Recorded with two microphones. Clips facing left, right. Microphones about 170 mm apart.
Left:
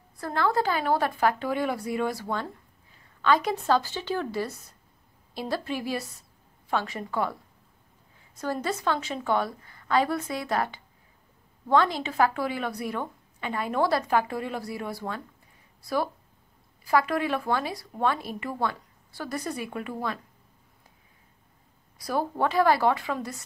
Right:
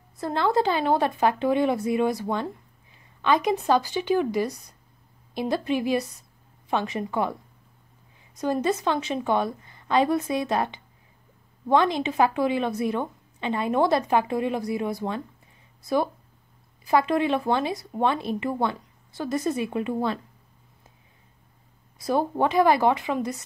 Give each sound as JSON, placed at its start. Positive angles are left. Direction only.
{"t": 0.2, "sound": "speech", "side_deg": -20}
{"t": 8.4, "sound": "speech", "side_deg": -20}
{"t": 21.9, "sound": "speech", "side_deg": -20}